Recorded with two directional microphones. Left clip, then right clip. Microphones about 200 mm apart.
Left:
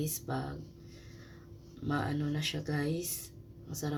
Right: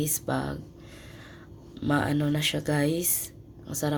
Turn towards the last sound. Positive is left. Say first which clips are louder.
# right 9 dB
turn(degrees=-45)  # may be behind; listen again after turning